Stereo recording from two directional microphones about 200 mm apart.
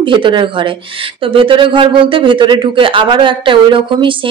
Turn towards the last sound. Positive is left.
turn(degrees=-25)  # may be behind; listen again after turning